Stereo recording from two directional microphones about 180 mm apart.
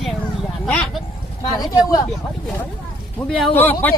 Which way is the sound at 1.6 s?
20° left (ahead or behind).